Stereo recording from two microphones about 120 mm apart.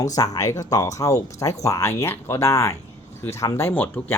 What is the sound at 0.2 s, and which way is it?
Speech, 30° left (ahead or behind).